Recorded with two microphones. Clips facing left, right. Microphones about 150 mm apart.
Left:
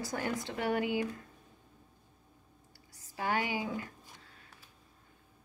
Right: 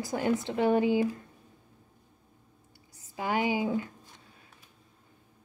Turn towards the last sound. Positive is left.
turn(degrees=-20)  # may be behind; listen again after turning